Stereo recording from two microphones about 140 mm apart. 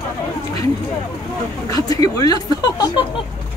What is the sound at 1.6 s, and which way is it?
Speech, 25° left (ahead or behind).